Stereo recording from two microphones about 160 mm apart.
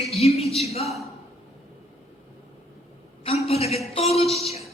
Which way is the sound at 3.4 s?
40° left (ahead or behind).